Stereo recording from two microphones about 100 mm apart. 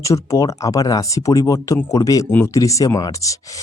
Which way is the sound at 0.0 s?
30° left (ahead or behind).